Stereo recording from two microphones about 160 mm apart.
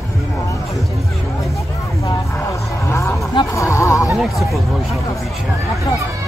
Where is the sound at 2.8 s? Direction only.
15° left (ahead or behind).